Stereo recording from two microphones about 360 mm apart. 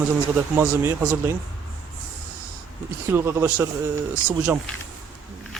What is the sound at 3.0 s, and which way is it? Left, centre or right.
Speech, centre.